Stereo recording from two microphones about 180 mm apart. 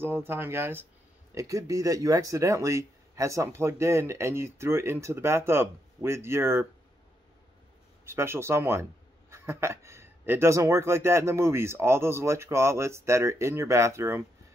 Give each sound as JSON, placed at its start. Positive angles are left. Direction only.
{"t": 0.0, "sound": "speech", "side_deg": -10}
{"t": 8.0, "sound": "speech", "side_deg": -15}